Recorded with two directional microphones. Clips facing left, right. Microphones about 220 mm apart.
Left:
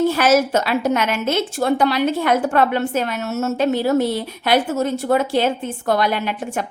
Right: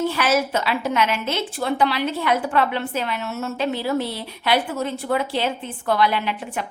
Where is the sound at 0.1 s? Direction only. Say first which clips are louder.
Left 5 dB; 45° left (ahead or behind).